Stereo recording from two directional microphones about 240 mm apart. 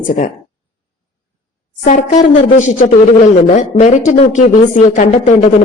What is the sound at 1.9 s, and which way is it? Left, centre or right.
Speech, left.